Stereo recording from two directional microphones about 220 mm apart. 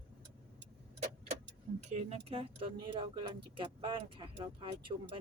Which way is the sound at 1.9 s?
30° right (ahead or behind).